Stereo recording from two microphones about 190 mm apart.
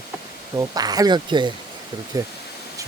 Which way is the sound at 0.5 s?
20° right (ahead or behind).